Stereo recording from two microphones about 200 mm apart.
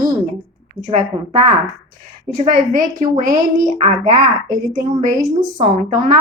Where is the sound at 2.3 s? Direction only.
40° right (ahead or behind).